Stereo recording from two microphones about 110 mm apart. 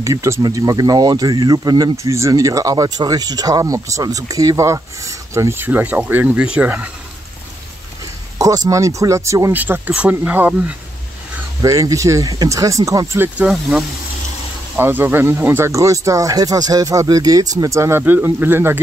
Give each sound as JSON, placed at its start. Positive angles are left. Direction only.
{"t": 0.0, "sound": "speech", "side_deg": -30}
{"t": 8.4, "sound": "speech", "side_deg": -30}
{"t": 9.5, "sound": "speech", "side_deg": -15}
{"t": 11.6, "sound": "speech", "side_deg": -30}
{"t": 13.5, "sound": "speech", "side_deg": -5}
{"t": 14.8, "sound": "speech", "side_deg": -20}